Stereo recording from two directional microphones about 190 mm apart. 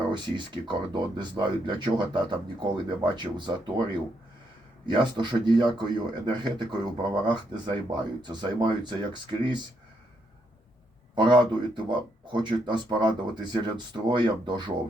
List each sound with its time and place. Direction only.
0.1 s speech: 25° right (ahead or behind)
4.9 s speech: 25° right (ahead or behind)
11.1 s a man's voice: 25° right (ahead or behind)